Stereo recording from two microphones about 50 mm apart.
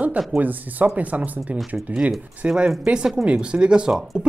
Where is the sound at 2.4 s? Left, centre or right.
Right.